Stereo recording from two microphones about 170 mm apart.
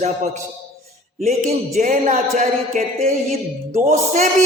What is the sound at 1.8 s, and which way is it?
A man's voice, 50° right (ahead or behind).